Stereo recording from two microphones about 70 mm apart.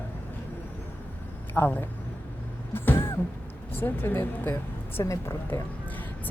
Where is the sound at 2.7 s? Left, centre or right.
Left.